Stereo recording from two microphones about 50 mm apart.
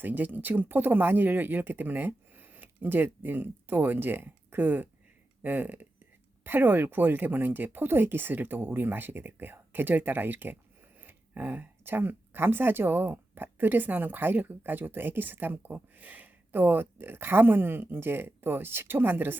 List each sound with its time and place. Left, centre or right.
0.0 s speech: right